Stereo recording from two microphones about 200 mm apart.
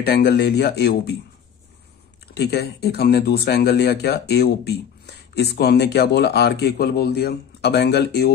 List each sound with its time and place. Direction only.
0.1 s speech: 50° left (ahead or behind)
2.3 s speech: 55° left (ahead or behind)